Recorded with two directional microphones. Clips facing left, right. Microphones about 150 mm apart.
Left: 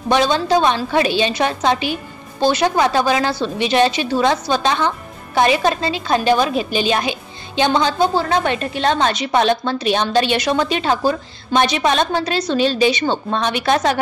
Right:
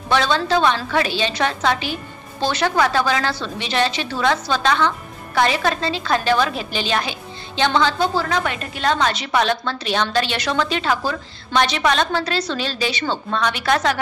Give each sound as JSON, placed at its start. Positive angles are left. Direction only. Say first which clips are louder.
{"t": 0.1, "sound": "a woman's voice", "louder": "left 3 dB", "side_deg": 15}